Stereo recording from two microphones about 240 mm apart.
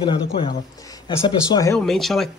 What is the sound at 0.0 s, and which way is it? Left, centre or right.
Speech, centre.